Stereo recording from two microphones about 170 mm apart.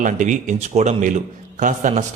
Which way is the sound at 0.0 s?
45° right (ahead or behind).